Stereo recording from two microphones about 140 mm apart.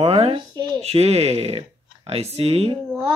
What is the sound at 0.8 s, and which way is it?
Speech, 45° right (ahead or behind).